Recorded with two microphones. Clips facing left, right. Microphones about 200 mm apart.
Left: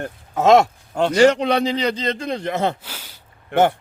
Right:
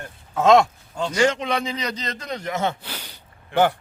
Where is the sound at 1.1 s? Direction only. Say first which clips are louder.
Left 6 dB; 35° left (ahead or behind).